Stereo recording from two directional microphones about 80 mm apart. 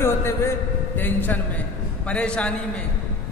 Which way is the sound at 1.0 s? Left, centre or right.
Left.